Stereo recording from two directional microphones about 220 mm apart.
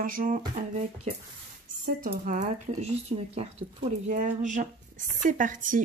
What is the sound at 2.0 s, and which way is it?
Speech, 35° right (ahead or behind).